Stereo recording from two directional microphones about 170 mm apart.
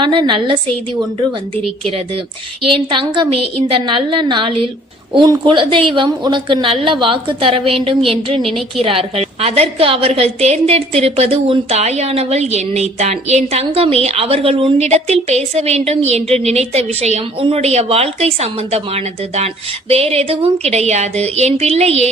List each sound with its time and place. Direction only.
0.0 s a woman's voice: 30° right (ahead or behind)
2.7 s a woman's voice: 30° right (ahead or behind)
8.4 s a woman's voice: centre (ahead or behind)
8.8 s a woman's voice: 35° right (ahead or behind)